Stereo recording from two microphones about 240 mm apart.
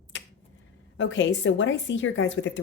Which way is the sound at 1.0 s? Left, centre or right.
Left.